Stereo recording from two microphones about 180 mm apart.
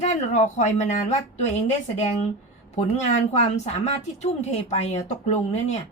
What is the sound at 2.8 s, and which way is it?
Speech, 35° left (ahead or behind).